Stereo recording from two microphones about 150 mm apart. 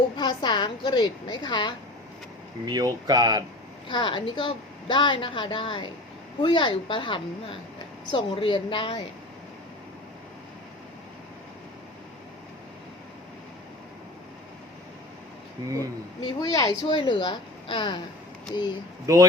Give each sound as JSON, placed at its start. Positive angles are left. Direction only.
{"t": 0.2, "sound": "a woman's voice", "side_deg": 30}
{"t": 2.6, "sound": "speech", "side_deg": -25}
{"t": 3.8, "sound": "a woman's voice", "side_deg": 30}
{"t": 16.2, "sound": "a woman's voice", "side_deg": 25}
{"t": 19.1, "sound": "speech", "side_deg": -25}